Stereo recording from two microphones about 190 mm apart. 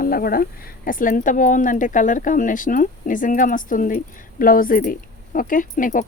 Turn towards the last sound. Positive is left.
turn(degrees=45)  # may be behind; listen again after turning